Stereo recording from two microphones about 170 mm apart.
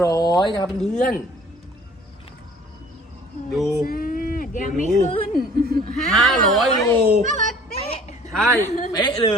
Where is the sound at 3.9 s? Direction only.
60° left (ahead or behind).